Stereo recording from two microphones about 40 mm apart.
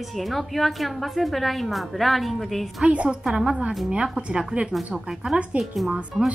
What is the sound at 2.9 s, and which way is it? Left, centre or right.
A woman's voice, right.